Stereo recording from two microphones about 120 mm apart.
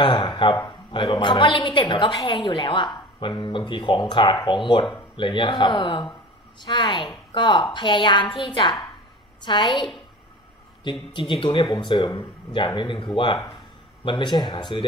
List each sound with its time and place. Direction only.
0.0 s a woman's voice: 40° left (ahead or behind)
10.8 s a woman's voice: 45° left (ahead or behind)